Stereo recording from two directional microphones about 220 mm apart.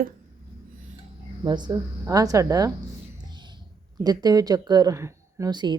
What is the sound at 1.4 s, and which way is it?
Speech, 20° right (ahead or behind).